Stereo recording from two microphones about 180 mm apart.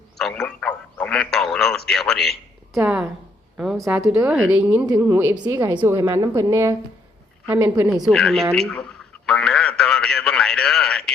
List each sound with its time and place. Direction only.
0.2 s a man's voice: centre (ahead or behind)
8.0 s a man's voice: 5° left (ahead or behind)
8.5 s radio: 5° left (ahead or behind)